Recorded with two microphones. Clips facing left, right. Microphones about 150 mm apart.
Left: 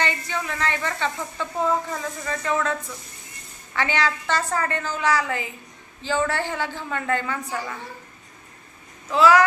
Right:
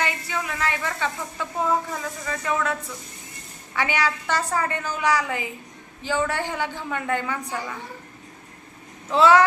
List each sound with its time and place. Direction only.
0.0 s sizzle: 5° right (ahead or behind)
1.9 s a woman's voice: 5° right (ahead or behind)
3.8 s a woman's voice: 10° right (ahead or behind)
9.1 s speech: 25° right (ahead or behind)